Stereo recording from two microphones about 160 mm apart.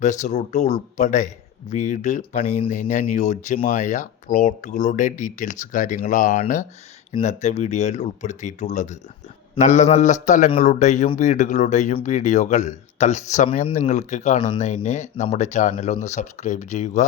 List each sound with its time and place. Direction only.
0.0 s speech: 50° left (ahead or behind)